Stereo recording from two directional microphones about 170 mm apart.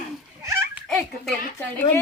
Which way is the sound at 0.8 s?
Centre (ahead or behind).